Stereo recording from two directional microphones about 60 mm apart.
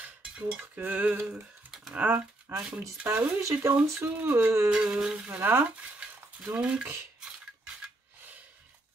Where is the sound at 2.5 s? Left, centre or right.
Right.